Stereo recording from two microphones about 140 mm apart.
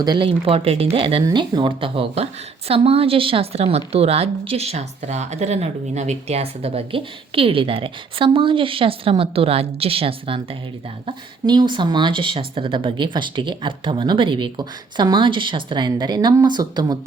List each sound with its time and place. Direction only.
0.0 s speech: 35° right (ahead or behind)